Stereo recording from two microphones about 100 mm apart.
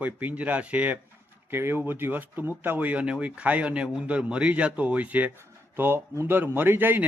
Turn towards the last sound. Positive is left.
turn(degrees=-20)  # may be behind; listen again after turning